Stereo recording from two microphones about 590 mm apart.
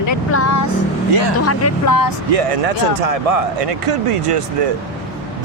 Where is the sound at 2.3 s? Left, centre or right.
Right.